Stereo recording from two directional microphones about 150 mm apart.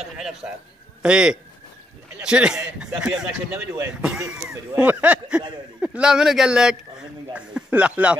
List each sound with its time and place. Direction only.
0.2 s a sound: 5° right (ahead or behind)
1.0 s a man's voice: 5° right (ahead or behind)
3.5 s speech: 20° right (ahead or behind)
4.0 s a man's voice: 5° right (ahead or behind)